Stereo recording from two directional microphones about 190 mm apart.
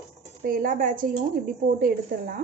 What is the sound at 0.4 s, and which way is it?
Speech, 45° right (ahead or behind).